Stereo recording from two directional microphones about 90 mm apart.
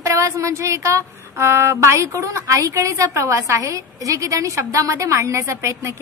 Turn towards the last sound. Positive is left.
turn(degrees=-35)  # may be behind; listen again after turning